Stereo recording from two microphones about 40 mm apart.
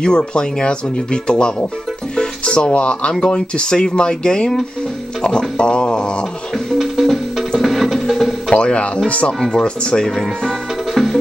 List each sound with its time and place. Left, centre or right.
0.0 s speech: left
5.6 s speech: left
6.8 s music: centre
8.5 s speech: left; by 10.5 s centre
11.0 s music: centre